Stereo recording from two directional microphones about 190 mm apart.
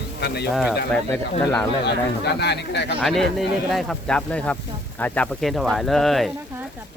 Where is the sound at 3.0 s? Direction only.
Centre (ahead or behind).